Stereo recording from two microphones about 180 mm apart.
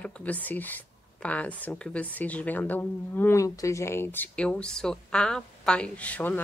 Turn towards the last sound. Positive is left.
turn(degrees=10)  # may be behind; listen again after turning